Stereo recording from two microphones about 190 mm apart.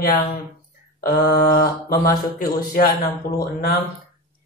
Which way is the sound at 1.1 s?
55° left (ahead or behind).